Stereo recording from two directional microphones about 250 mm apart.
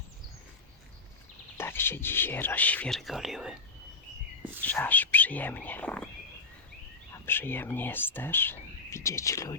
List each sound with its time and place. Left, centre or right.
1.5 s speech: centre
4.6 s speech: centre
7.3 s speech: centre